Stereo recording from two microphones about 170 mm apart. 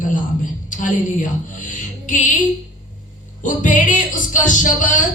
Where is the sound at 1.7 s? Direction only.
50° left (ahead or behind).